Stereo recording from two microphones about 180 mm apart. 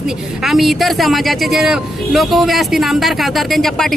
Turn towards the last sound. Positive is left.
turn(degrees=0)  # may be behind; listen again after turning